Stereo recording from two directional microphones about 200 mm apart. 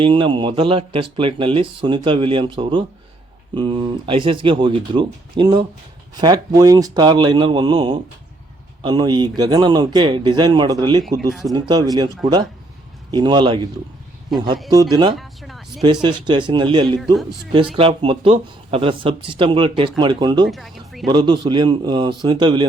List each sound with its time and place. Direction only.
0.0 s speech: 25° right (ahead or behind)
15.1 s a sound: centre (ahead or behind)
15.8 s speech: 20° right (ahead or behind)
20.5 s speech: centre (ahead or behind)
21.1 s speech: 25° right (ahead or behind)